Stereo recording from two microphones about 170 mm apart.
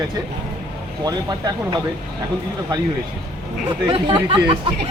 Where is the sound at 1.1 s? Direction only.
25° right (ahead or behind).